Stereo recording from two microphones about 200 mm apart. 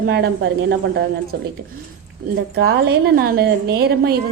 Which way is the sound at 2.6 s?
55° right (ahead or behind).